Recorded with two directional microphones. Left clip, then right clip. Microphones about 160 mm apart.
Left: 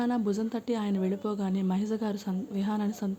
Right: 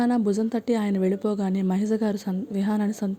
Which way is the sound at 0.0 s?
40° right (ahead or behind).